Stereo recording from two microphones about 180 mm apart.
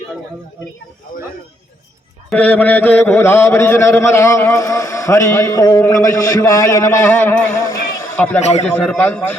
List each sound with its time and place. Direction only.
2.3 s mantra: 10° left (ahead or behind)
8.4 s a man's voice: 40° left (ahead or behind)
8.6 s mantra: 5° left (ahead or behind)